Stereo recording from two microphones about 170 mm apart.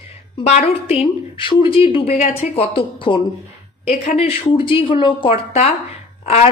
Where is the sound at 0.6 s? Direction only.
35° left (ahead or behind).